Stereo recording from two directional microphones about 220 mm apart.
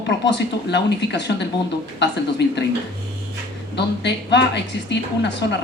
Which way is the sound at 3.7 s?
50° left (ahead or behind).